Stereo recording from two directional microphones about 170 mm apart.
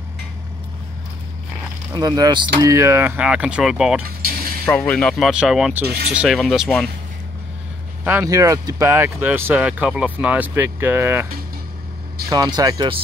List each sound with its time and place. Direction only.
2.0 s speech: 20° right (ahead or behind); by 5.9 s 5° right (ahead or behind)
5.9 s speech: 65° right (ahead or behind)
6.1 s speech: centre (ahead or behind)
8.0 s speech: 10° right (ahead or behind)
12.3 s speech: 25° right (ahead or behind)